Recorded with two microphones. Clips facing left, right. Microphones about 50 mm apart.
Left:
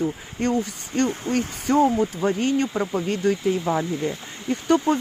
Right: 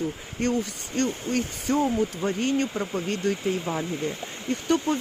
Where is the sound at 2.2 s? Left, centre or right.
Left.